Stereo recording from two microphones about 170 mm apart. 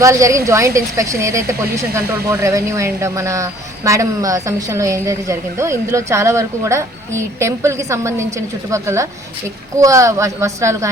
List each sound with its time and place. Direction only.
0.0 s a woman's voice: 20° right (ahead or behind)